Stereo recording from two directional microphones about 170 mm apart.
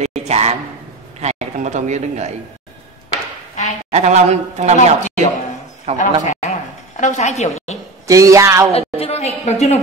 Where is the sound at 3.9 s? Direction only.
40° right (ahead or behind).